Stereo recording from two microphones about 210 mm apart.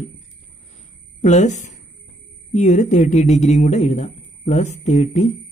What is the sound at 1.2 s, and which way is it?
Speech, 35° left (ahead or behind).